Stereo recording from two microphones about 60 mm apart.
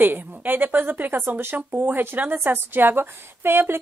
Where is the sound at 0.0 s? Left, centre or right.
Right.